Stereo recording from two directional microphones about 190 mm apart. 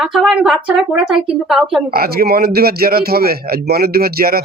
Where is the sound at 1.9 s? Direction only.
55° right (ahead or behind).